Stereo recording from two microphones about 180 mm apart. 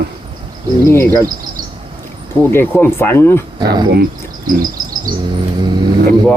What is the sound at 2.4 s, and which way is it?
Speech, 10° left (ahead or behind).